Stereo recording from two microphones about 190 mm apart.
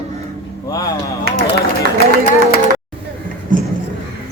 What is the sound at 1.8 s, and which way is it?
Music, 60° right (ahead or behind).